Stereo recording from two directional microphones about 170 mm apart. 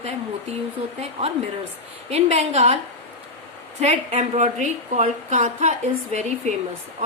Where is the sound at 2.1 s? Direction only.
40° right (ahead or behind).